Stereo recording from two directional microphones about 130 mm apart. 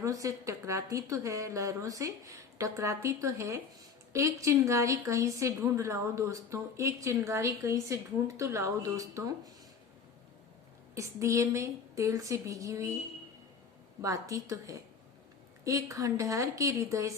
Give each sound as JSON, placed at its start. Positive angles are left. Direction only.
{"t": 0.0, "sound": "a woman's voice", "side_deg": -25}
{"t": 10.9, "sound": "a woman's voice", "side_deg": -25}
{"t": 14.0, "sound": "a woman's voice", "side_deg": -25}